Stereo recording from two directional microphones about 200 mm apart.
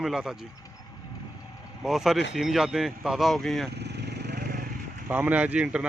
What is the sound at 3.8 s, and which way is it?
Vehicle, 55° right (ahead or behind).